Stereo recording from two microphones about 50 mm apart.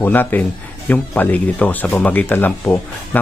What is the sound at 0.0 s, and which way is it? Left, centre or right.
Speech, left.